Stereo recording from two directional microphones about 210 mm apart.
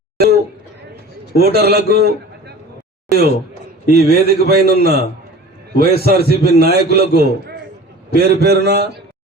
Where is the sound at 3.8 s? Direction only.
50° right (ahead or behind).